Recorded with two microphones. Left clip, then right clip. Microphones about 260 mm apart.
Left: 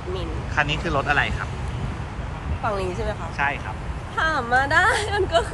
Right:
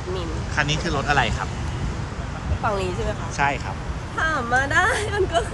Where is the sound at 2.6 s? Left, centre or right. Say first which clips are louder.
Right 1 dB; centre.